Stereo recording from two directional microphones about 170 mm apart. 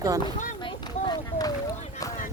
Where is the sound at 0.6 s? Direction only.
25° left (ahead or behind).